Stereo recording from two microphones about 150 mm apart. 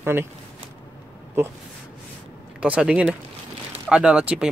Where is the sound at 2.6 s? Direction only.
5° right (ahead or behind).